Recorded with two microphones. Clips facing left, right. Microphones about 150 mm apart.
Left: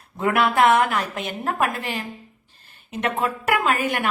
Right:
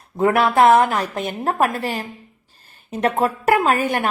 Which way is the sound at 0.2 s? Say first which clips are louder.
Right 4 dB; 35° right (ahead or behind).